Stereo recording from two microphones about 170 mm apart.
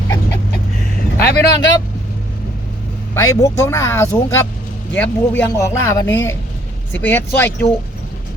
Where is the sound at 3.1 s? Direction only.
20° left (ahead or behind).